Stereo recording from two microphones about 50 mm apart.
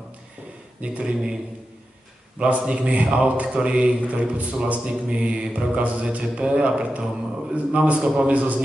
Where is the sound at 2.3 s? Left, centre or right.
Centre.